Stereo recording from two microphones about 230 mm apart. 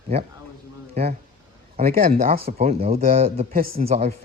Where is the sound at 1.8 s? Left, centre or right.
Right.